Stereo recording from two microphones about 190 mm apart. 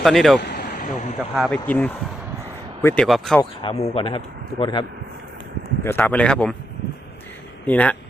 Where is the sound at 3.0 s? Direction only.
Centre (ahead or behind).